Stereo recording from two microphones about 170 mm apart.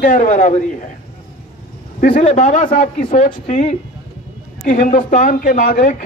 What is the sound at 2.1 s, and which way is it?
A man's voice, 40° left (ahead or behind).